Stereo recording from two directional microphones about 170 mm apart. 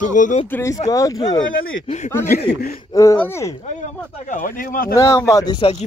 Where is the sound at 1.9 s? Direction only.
45° left (ahead or behind).